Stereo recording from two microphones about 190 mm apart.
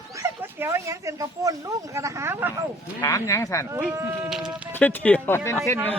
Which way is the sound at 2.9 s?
15° left (ahead or behind).